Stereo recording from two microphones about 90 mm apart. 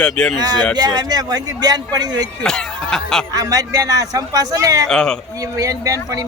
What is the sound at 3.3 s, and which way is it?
Speech, 40° right (ahead or behind).